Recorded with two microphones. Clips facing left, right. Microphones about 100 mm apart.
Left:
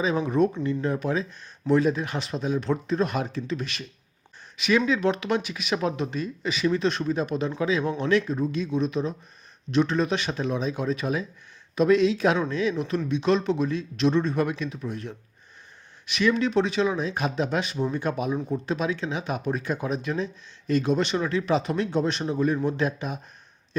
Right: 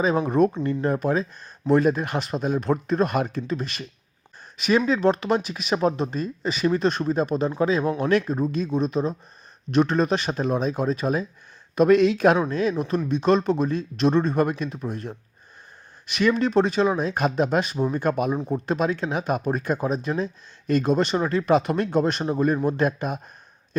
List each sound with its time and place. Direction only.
0.0 s speech: 45° right (ahead or behind)
11.7 s speech: 55° right (ahead or behind)
12.5 s speech: 45° right (ahead or behind)